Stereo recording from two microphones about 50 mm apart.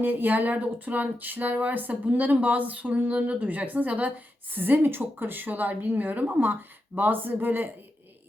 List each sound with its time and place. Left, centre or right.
0.0 s speech: right